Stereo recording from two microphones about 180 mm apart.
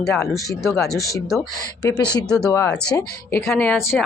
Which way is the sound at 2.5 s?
20° left (ahead or behind).